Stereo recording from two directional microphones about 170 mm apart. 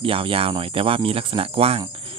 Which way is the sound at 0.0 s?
30° right (ahead or behind).